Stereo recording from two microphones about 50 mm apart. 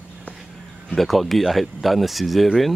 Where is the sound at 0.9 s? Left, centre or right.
Centre.